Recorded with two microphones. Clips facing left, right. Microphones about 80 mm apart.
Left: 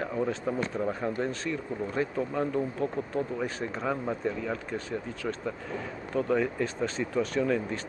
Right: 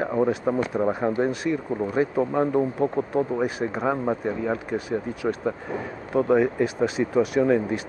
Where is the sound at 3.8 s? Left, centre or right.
Right; by 5.3 s centre.